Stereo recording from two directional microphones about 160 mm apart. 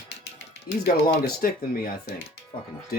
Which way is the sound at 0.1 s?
90° left.